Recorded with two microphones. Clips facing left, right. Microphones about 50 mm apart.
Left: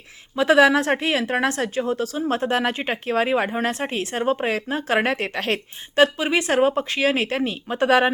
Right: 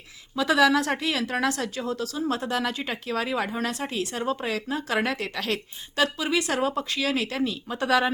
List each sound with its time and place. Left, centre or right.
0.3 s speech: left